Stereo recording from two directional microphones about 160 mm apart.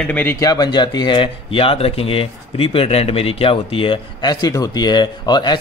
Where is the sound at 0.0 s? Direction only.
10° left (ahead or behind).